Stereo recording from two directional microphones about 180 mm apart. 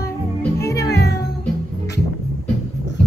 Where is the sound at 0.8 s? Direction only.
65° left (ahead or behind).